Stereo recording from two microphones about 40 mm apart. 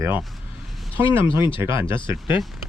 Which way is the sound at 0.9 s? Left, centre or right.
Right.